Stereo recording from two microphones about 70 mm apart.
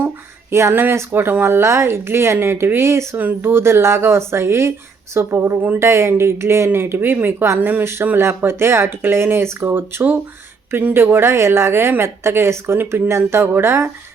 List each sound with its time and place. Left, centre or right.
0.5 s speech: right
3.2 s speech: right